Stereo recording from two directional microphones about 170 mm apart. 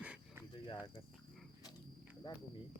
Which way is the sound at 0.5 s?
30° left (ahead or behind).